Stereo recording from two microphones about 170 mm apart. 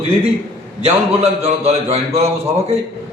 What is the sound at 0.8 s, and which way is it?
A man's voice, 40° right (ahead or behind).